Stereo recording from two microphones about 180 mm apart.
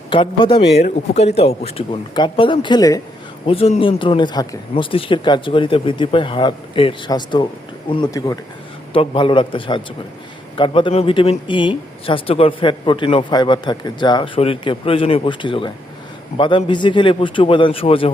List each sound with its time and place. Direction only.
0.1 s a man's voice: 30° left (ahead or behind)
3.4 s a man's voice: 30° left (ahead or behind)